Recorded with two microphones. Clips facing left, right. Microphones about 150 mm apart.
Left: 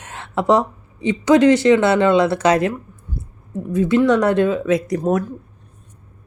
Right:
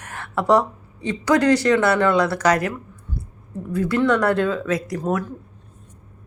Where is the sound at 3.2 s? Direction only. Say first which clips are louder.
Left 1 dB; 20° left (ahead or behind).